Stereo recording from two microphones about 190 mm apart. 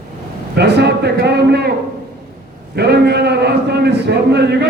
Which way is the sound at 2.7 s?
60° right (ahead or behind).